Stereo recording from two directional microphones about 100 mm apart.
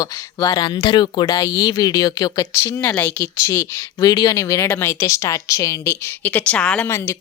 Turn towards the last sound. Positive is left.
turn(degrees=10)  # may be behind; listen again after turning